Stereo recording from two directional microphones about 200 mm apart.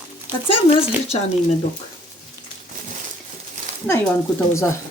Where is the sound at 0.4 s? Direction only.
25° left (ahead or behind).